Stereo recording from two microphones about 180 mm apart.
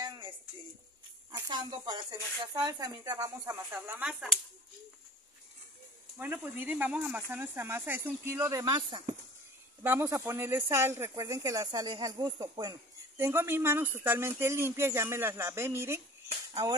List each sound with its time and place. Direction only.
0.0 s a sound: 20° right (ahead or behind)
1.3 s speech: 20° right (ahead or behind); by 4.4 s centre (ahead or behind)
6.1 s speech: 10° right (ahead or behind)
9.8 s speech: 15° right (ahead or behind)